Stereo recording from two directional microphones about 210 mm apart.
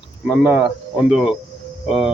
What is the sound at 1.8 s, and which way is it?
Speech, 5° right (ahead or behind).